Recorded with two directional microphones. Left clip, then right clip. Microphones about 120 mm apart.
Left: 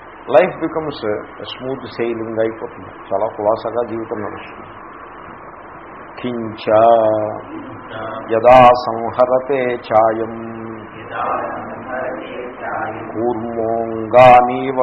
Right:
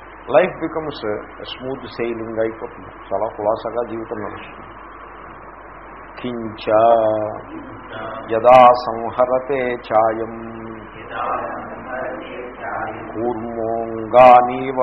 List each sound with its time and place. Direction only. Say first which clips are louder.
0.3 s speech: left 3 dB; 25° right (ahead or behind)
6.2 s speech: left 3 dB; 25° right (ahead or behind)
10.2 s a sound: left 3 dB; 30° right (ahead or behind)